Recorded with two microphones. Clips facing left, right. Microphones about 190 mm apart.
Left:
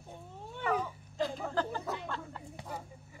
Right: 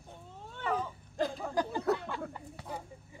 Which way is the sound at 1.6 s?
15° right (ahead or behind).